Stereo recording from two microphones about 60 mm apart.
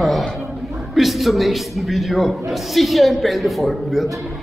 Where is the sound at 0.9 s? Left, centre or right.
Centre.